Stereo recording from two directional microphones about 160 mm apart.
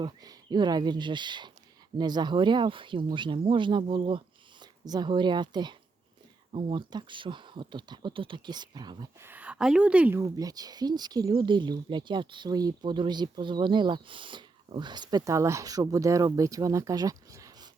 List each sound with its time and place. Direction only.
0.0 s speech: 25° right (ahead or behind)
9.2 s a woman's voice: 10° right (ahead or behind)
10.3 s speech: 25° right (ahead or behind)